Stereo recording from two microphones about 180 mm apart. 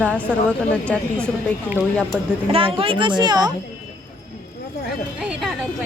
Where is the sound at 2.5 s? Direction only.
30° right (ahead or behind).